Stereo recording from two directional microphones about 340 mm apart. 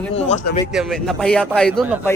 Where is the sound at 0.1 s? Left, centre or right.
Centre.